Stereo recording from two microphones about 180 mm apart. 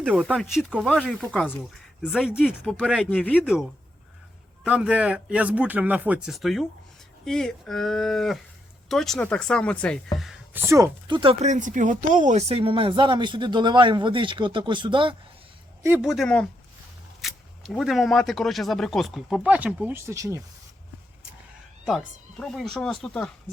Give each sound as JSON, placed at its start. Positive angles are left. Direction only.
{"t": 0.0, "sound": "speech", "side_deg": -10}
{"t": 10.2, "sound": "speech", "side_deg": -5}
{"t": 11.1, "sound": "speech", "side_deg": -30}
{"t": 11.4, "sound": "speech", "side_deg": -45}
{"t": 16.0, "sound": "speech", "side_deg": 0}
{"t": 21.8, "sound": "speech", "side_deg": 0}